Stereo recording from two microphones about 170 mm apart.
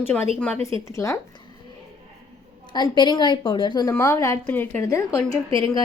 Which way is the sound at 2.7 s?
25° left (ahead or behind).